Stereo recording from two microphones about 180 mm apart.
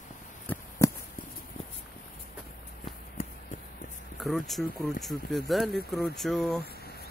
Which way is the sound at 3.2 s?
40° left (ahead or behind).